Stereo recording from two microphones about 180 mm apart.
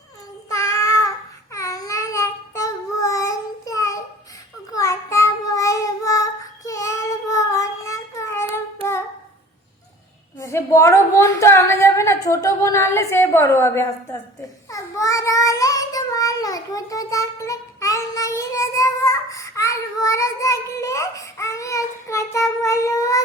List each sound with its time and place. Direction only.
0.5 s child singing: 15° left (ahead or behind)
10.4 s a sound: 15° left (ahead or behind)
14.7 s child singing: 20° left (ahead or behind)